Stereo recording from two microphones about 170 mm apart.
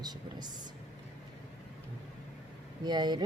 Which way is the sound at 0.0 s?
25° right (ahead or behind).